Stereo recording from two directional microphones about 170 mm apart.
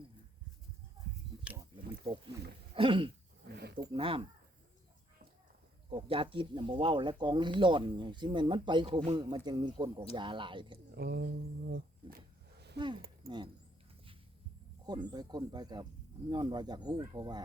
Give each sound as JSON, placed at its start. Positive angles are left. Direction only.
{"t": 1.7, "sound": "wild animals", "side_deg": -20}
{"t": 2.7, "sound": "speech", "side_deg": -30}
{"t": 3.5, "sound": "wild animals", "side_deg": -75}
{"t": 3.9, "sound": "speech", "side_deg": -30}
{"t": 5.9, "sound": "speech", "side_deg": -30}
{"t": 10.9, "sound": "a sound", "side_deg": -70}
{"t": 13.2, "sound": "speech", "side_deg": -25}
{"t": 14.8, "sound": "speech", "side_deg": -25}